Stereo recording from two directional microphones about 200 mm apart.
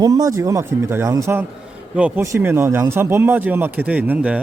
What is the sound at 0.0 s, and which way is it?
Speech, 20° right (ahead or behind).